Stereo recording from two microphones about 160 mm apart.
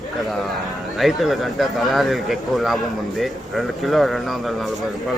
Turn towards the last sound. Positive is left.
turn(degrees=0)  # may be behind; listen again after turning